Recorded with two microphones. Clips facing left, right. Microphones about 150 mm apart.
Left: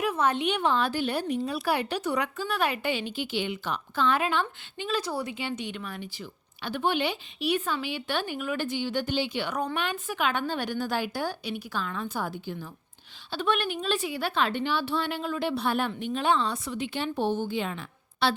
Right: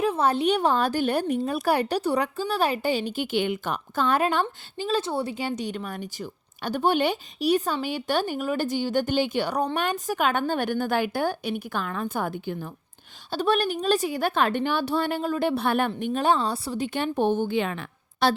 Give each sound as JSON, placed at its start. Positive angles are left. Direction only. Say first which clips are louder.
{"t": 0.0, "sound": "speech", "louder": "right 4 dB", "side_deg": -30}
{"t": 5.3, "sound": "a woman's voice", "louder": "right 4 dB", "side_deg": -40}
{"t": 13.3, "sound": "a woman's voice", "louder": "right 4 dB", "side_deg": -40}
{"t": 18.2, "sound": "a woman's voice", "louder": "right 4 dB", "side_deg": -45}